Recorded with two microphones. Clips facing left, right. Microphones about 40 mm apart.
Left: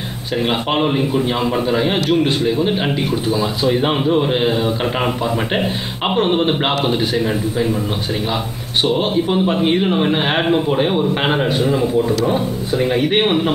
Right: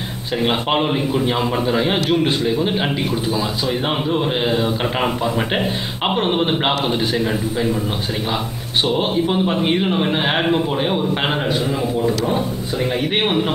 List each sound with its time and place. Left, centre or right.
0.4 s speech: centre
3.3 s speech: centre
3.8 s speech: centre
8.9 s speech: centre
12.3 s speech: left
12.8 s speech: centre